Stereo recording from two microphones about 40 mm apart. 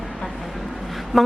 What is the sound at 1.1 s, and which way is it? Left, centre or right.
Speech, centre.